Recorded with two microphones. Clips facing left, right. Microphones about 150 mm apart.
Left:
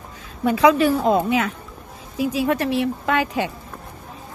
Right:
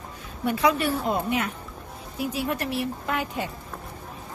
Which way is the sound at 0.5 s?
90° left.